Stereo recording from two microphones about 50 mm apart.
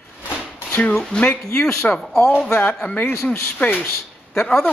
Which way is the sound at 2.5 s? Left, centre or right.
Left.